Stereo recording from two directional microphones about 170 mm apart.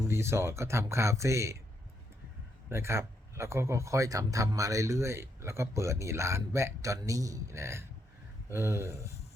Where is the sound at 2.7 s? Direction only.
15° right (ahead or behind).